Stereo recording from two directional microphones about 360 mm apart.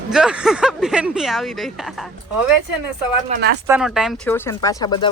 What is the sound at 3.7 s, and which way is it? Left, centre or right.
Speech, centre.